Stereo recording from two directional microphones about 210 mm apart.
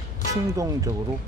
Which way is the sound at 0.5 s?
15° right (ahead or behind).